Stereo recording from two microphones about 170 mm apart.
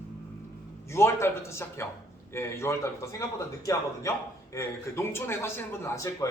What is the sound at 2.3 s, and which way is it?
A man's voice, 15° left (ahead or behind).